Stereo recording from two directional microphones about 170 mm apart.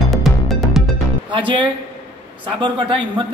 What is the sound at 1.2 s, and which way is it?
Speech, 30° right (ahead or behind).